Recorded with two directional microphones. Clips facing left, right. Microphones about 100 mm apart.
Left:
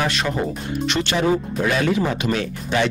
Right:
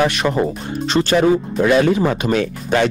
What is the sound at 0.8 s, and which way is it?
Speech, 35° right (ahead or behind).